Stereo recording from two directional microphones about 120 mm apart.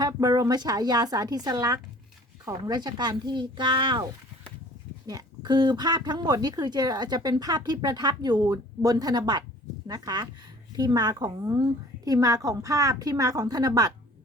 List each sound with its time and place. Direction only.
0.0 s speech: 30° right (ahead or behind)
5.0 s speech: 35° right (ahead or behind)